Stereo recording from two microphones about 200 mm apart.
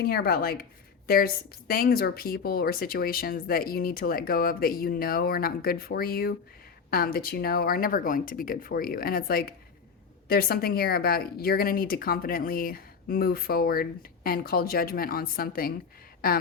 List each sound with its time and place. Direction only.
0.0 s speech: 50° left (ahead or behind)